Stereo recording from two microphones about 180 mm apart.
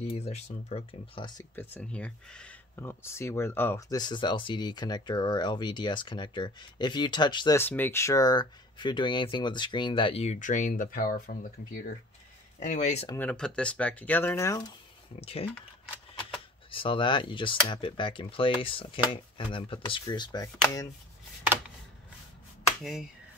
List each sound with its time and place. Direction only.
0.1 s speech: 35° left (ahead or behind)
1.5 s speech: 10° left (ahead or behind)
7.5 s speech: 10° left (ahead or behind); by 13.1 s 40° left (ahead or behind)
13.1 s speech: 10° left (ahead or behind)
15.1 s speech: 35° left (ahead or behind)
16.7 s speech: 30° left (ahead or behind)